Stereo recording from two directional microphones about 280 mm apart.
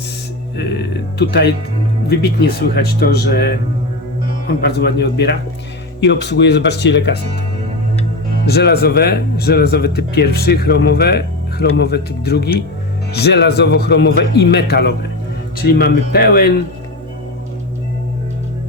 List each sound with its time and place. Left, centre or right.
0.5 s speech: left
4.6 s speech: left
8.4 s speech: left